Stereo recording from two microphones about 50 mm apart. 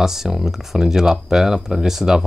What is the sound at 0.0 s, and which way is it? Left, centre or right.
Speech, centre.